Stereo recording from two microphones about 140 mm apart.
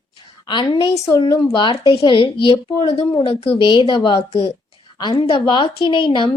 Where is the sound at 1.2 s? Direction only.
35° left (ahead or behind).